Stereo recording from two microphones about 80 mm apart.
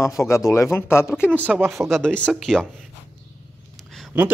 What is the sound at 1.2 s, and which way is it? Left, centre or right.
Speech, right.